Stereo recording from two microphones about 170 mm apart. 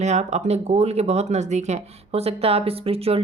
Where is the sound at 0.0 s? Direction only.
40° right (ahead or behind).